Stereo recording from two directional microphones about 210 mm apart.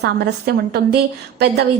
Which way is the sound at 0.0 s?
50° right (ahead or behind).